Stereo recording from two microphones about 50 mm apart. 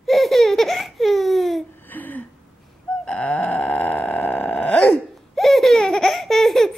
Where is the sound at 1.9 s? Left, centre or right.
Left.